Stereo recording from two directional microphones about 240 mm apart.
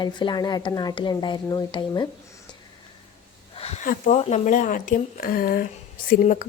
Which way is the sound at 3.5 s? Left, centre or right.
Left.